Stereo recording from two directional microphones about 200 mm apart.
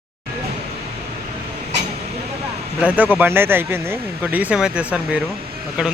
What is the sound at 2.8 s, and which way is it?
Speech, 10° right (ahead or behind).